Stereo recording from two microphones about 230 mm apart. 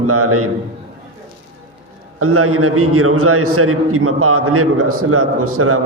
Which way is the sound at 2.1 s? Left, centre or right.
Right.